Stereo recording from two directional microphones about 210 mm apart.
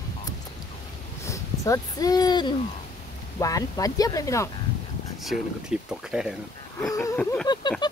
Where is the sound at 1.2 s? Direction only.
15° left (ahead or behind).